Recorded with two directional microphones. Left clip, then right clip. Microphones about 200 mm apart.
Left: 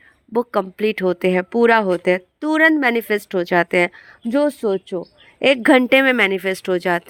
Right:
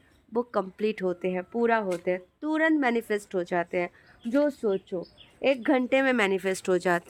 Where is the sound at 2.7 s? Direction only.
35° left (ahead or behind); by 5.8 s 50° left (ahead or behind).